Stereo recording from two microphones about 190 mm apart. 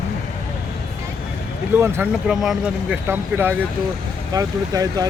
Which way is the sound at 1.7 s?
10° right (ahead or behind).